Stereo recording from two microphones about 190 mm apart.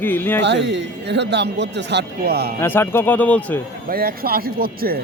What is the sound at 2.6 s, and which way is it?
A man's voice, 10° left (ahead or behind).